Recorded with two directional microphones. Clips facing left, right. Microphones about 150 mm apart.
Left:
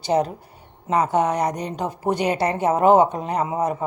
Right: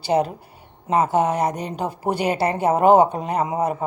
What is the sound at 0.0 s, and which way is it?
Speech, 10° right (ahead or behind).